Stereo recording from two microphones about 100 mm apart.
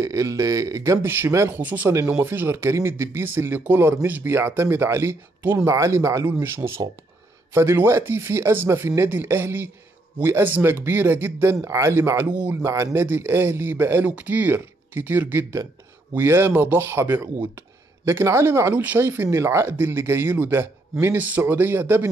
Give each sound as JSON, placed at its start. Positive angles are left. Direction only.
{"t": 0.0, "sound": "speech", "side_deg": -30}
{"t": 1.0, "sound": "speech", "side_deg": -20}
{"t": 12.6, "sound": "speech", "side_deg": -30}